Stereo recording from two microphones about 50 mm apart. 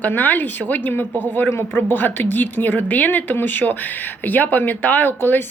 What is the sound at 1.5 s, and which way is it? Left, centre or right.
A woman's voice, left.